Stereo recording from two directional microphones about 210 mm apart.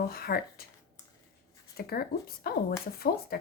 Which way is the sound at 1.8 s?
45° left (ahead or behind).